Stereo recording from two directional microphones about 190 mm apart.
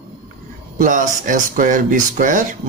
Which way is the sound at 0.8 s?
45° right (ahead or behind).